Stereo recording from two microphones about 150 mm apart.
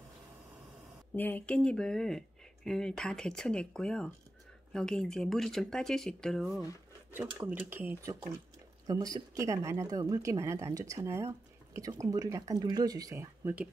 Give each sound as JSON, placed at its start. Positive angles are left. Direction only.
{"t": 1.1, "sound": "speech", "side_deg": 10}
{"t": 7.2, "sound": "speech", "side_deg": -10}